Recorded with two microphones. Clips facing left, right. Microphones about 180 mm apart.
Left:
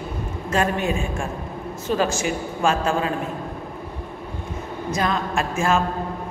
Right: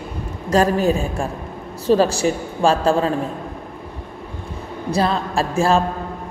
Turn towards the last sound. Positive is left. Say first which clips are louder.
# right 4 dB
turn(degrees=-35)  # may be behind; listen again after turning